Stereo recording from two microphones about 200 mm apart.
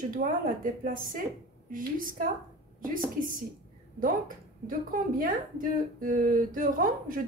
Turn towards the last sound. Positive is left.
turn(degrees=-45)  # may be behind; listen again after turning